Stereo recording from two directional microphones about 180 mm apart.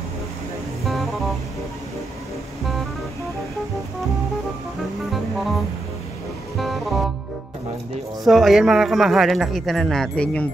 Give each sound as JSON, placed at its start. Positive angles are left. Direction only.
{"t": 0.8, "sound": "music", "side_deg": 0}
{"t": 5.1, "sound": "music", "side_deg": 0}
{"t": 6.6, "sound": "music", "side_deg": 0}
{"t": 8.2, "sound": "speech", "side_deg": 0}